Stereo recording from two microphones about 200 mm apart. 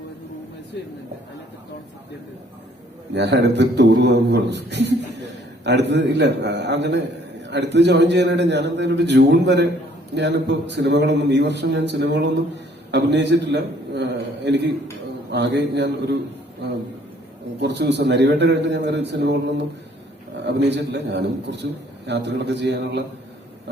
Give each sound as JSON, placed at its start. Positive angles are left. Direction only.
{"t": 3.1, "sound": "a man's voice", "side_deg": -60}
{"t": 17.6, "sound": "a man's voice", "side_deg": -60}